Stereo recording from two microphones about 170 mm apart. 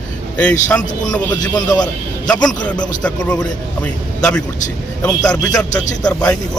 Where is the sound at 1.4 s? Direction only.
25° left (ahead or behind).